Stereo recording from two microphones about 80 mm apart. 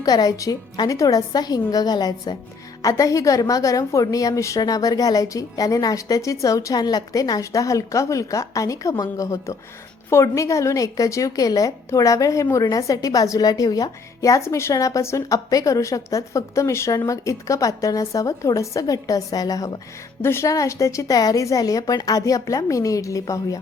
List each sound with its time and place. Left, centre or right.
0.0 s a woman's voice: left
2.8 s a woman's voice: left
14.2 s a woman's voice: left
20.2 s a woman's voice: left
20.5 s a woman's voice: left